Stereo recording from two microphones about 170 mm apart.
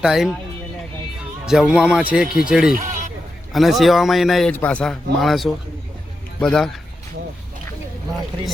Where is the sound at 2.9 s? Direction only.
50° right (ahead or behind).